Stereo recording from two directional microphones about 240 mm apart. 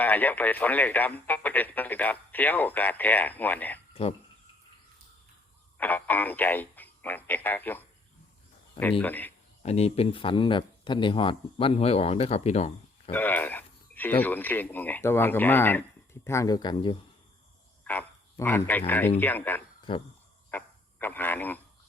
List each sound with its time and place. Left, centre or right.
0.0 s speech: centre
5.7 s speech: centre
9.6 s speech: left
13.1 s speech: centre
17.8 s speech: centre
19.9 s speech: left
20.5 s a sound: centre